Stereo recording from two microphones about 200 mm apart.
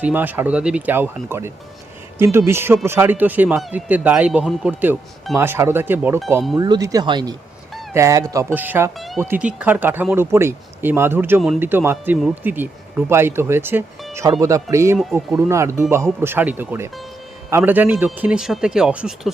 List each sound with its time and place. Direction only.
0.0 s a man's voice: 10° right (ahead or behind)